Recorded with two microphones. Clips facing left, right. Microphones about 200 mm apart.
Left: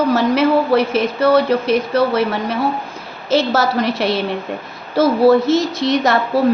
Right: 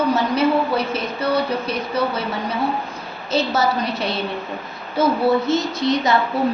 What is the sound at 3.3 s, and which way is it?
A woman's voice, 90° left.